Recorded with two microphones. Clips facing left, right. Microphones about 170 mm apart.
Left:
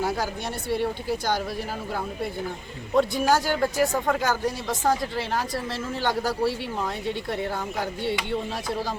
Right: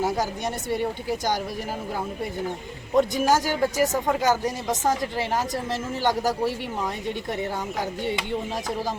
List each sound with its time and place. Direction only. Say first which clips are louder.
2.9 s speech: right 1 dB; 15° right (ahead or behind)